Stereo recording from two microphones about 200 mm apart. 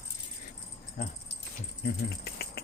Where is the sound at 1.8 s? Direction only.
50° left (ahead or behind).